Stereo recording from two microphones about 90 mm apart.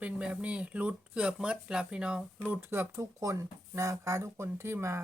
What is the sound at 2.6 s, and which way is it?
Speech, 25° right (ahead or behind).